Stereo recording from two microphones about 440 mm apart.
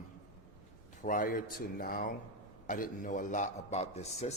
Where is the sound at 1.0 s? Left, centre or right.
Centre.